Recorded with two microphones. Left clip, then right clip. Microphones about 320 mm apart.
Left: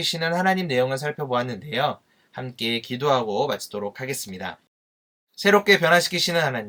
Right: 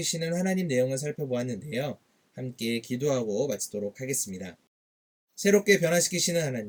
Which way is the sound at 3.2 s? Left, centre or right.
Centre.